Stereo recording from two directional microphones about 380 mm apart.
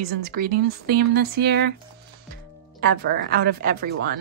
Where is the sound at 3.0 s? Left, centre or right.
Right.